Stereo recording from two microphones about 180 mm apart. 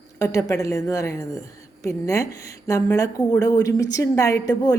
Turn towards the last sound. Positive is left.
turn(degrees=20)  # may be behind; listen again after turning